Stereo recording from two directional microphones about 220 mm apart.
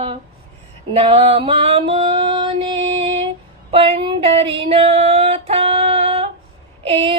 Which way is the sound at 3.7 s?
25° right (ahead or behind).